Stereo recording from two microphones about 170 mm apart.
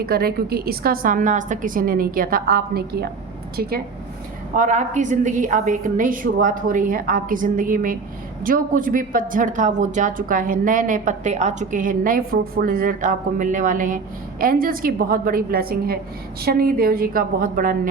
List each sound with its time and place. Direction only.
0.0 s a woman's voice: 60° right (ahead or behind)
4.5 s a woman's voice: 45° right (ahead or behind)